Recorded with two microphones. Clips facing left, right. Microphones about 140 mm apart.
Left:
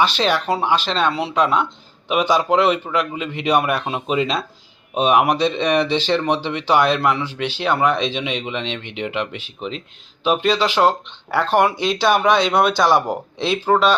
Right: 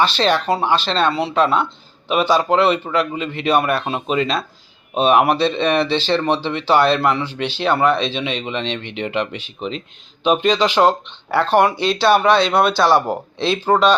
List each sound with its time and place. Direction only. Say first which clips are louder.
0.0 s speech: right 1 dB; 10° left (ahead or behind)